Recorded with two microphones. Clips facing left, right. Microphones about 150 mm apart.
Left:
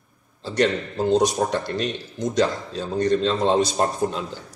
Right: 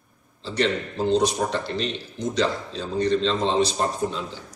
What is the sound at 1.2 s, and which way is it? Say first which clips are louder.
A man's voice: left 2 dB; 50° left (ahead or behind).